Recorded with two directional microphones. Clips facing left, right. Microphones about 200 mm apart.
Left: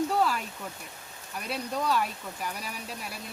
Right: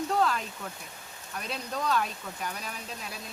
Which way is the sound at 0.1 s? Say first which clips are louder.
Even; 5° left (ahead or behind).